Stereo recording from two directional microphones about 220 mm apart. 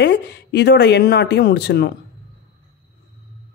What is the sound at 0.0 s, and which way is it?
Speech, 50° left (ahead or behind).